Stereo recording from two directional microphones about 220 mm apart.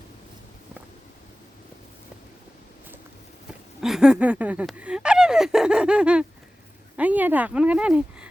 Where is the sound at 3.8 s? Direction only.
Centre (ahead or behind).